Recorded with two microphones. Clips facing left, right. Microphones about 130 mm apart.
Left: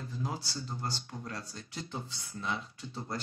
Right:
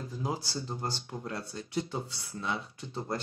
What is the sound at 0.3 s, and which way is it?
Speech, 35° right (ahead or behind).